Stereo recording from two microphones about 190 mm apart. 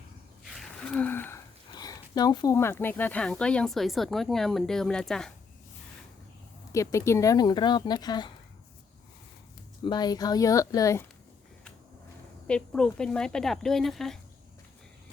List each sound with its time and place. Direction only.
0.5 s speech: 5° left (ahead or behind)
6.7 s speech: 15° left (ahead or behind)
9.8 s speech: 20° left (ahead or behind)
12.5 s speech: 5° left (ahead or behind)